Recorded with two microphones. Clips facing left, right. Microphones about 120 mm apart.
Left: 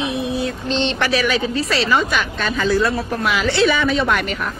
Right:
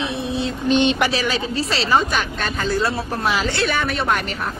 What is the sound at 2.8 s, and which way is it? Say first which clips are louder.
Speech: left 2 dB; 30° right (ahead or behind).